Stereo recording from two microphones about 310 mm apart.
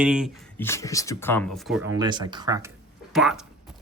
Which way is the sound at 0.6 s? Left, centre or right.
Centre.